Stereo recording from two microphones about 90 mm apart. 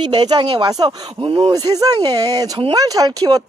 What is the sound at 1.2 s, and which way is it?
Speech, 90° right.